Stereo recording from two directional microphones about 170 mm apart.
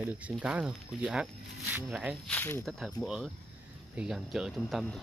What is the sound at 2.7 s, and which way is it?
Speech, centre (ahead or behind).